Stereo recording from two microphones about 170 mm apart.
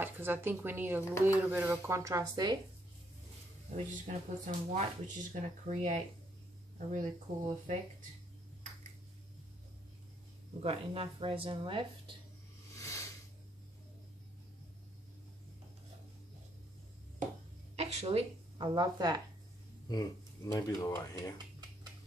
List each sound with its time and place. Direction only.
0.0 s speech: 10° right (ahead or behind)
3.7 s speech: 45° right (ahead or behind)
10.6 s speech: 35° right (ahead or behind)
12.7 s a sound: 15° left (ahead or behind)
17.7 s speech: 35° right (ahead or behind)
20.5 s speech: 20° left (ahead or behind)